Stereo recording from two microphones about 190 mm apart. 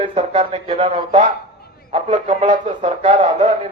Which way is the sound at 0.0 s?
30° right (ahead or behind).